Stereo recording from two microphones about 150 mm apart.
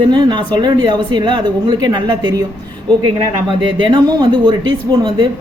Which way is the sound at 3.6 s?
30° right (ahead or behind).